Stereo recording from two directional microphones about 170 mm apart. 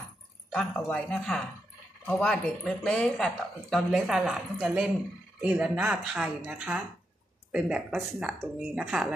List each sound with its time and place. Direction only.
0.5 s speech: 5° left (ahead or behind)